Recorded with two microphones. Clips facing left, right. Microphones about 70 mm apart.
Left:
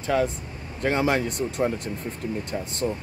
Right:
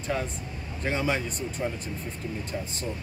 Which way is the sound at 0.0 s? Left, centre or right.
Left.